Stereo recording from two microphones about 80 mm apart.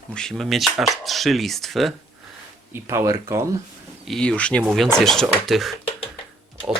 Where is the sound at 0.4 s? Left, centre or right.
Centre.